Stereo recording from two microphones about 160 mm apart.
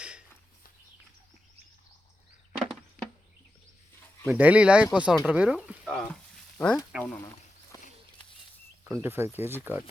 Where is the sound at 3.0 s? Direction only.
65° left (ahead or behind).